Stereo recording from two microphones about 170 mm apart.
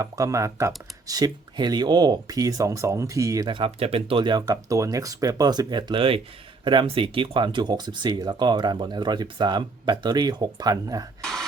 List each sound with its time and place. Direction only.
0.0 s speech: 20° right (ahead or behind)
11.2 s cough: 5° left (ahead or behind)